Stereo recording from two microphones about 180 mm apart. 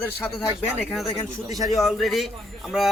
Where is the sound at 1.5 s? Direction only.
20° right (ahead or behind).